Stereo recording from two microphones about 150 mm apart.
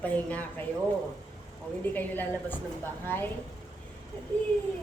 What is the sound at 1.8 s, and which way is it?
A woman's voice, 10° left (ahead or behind).